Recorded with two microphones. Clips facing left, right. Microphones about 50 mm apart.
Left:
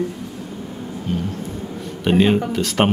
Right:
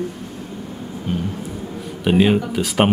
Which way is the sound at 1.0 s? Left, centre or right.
Centre.